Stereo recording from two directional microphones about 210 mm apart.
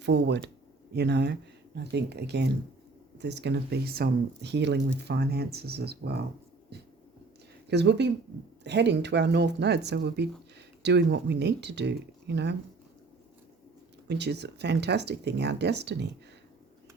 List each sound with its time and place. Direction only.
0.0 s speech: 55° right (ahead or behind)
7.7 s speech: 55° right (ahead or behind)
14.1 s speech: 55° right (ahead or behind)